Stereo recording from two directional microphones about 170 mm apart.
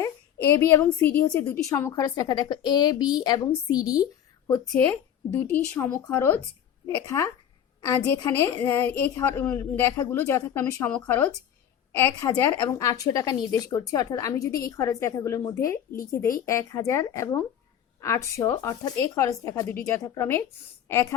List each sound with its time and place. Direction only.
0.8 s a woman's voice: 10° left (ahead or behind)
4.6 s a woman's voice: 5° left (ahead or behind)